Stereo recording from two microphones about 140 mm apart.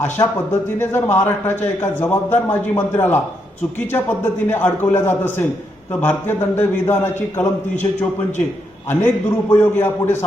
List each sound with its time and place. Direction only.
0.8 s a man's voice: 15° left (ahead or behind)
8.9 s a man's voice: 15° left (ahead or behind)